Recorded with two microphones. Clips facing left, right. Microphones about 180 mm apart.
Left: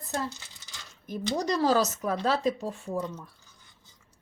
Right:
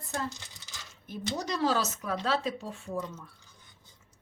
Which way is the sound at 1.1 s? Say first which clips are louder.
Left 5 dB; 40° left (ahead or behind).